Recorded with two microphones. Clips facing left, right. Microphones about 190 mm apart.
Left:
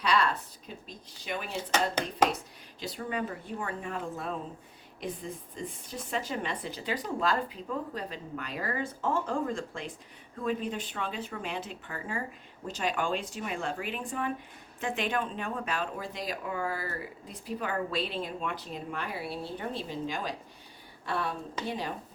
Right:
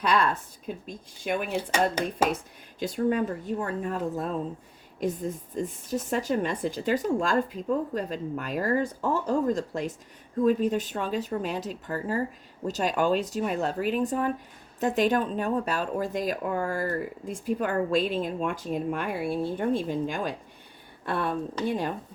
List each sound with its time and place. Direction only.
0.0 s speech: 50° right (ahead or behind)
1.7 s speech: 10° right (ahead or behind)
2.3 s speech: 50° right (ahead or behind)